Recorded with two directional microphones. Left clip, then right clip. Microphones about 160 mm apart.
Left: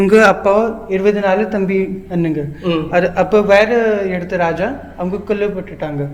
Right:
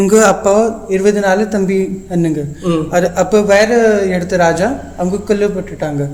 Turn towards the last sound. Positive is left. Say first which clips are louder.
# right 3 dB
turn(degrees=-30)  # may be behind; listen again after turning